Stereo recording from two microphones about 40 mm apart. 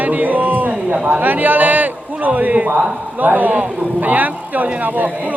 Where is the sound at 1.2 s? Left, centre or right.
Right.